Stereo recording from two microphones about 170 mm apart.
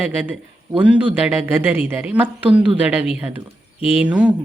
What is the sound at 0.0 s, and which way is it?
A woman's voice, 10° right (ahead or behind).